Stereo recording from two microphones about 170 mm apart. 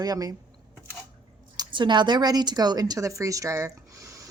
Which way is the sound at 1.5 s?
25° right (ahead or behind).